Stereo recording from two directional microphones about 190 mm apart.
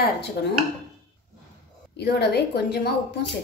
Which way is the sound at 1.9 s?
60° left (ahead or behind).